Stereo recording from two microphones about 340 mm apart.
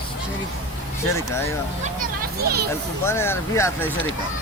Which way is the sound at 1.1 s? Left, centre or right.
Centre.